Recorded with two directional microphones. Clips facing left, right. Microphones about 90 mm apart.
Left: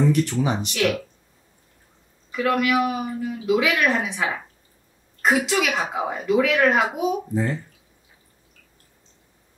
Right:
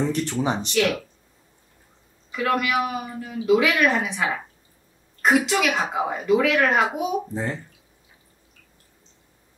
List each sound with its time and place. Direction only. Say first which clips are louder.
0.1 s speech: left 2 dB; 35° right (ahead or behind)
0.7 s a woman's voice: right 1 dB; centre (ahead or behind)
2.3 s a woman's voice: left 2 dB; centre (ahead or behind)